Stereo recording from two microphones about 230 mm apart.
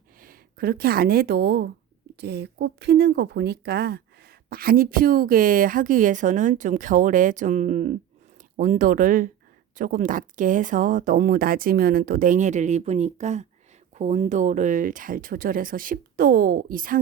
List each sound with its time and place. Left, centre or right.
0.2 s speech: right